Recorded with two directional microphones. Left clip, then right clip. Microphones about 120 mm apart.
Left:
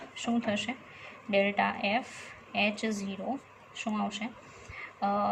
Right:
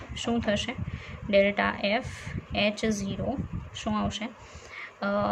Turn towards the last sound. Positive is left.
turn(degrees=-40)  # may be behind; listen again after turning